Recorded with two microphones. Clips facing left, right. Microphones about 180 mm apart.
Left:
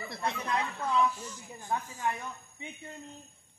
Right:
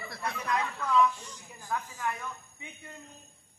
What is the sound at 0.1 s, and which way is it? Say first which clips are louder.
A man's voice: even; 25° left (ahead or behind).